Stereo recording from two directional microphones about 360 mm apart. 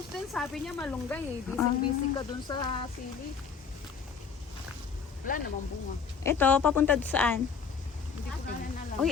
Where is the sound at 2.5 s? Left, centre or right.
Centre.